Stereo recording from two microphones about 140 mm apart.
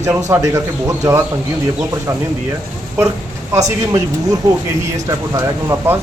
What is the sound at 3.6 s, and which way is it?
Speech, 25° right (ahead or behind).